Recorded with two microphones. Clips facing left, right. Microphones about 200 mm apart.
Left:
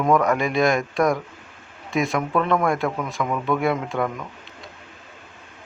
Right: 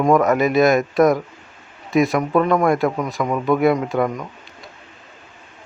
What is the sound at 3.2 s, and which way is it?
Speech, 20° right (ahead or behind).